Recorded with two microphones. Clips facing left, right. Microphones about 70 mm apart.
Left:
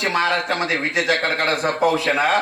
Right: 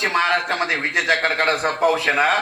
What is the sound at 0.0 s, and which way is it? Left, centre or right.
A man's voice, right.